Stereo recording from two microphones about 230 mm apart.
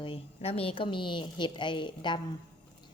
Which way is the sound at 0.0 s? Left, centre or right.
Left.